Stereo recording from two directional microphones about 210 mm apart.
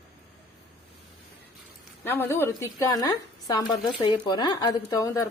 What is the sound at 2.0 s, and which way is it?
Speech, 10° left (ahead or behind).